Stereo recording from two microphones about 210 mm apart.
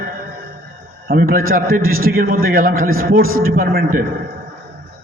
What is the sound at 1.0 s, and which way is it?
A man's voice, 45° right (ahead or behind).